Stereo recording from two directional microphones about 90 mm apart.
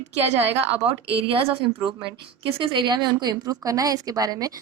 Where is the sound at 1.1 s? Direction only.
90° right.